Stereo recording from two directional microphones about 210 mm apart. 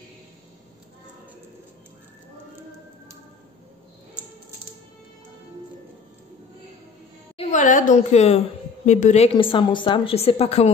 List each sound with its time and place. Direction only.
7.3 s a woman's voice: 35° left (ahead or behind)